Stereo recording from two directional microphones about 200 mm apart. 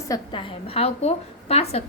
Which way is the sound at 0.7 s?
30° left (ahead or behind).